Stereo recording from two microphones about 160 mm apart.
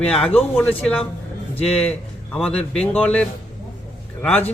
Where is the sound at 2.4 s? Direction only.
5° left (ahead or behind).